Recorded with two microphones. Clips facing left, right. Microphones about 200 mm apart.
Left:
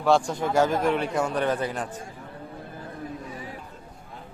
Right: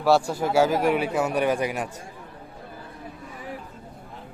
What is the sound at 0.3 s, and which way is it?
Speech, 5° right (ahead or behind).